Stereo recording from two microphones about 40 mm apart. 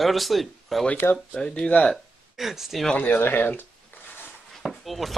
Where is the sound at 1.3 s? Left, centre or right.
Left.